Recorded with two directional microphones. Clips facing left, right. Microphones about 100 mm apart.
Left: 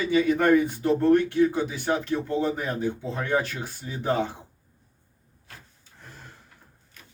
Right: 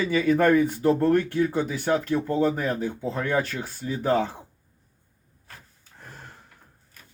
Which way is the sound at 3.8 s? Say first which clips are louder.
Right 11 dB; 25° left (ahead or behind).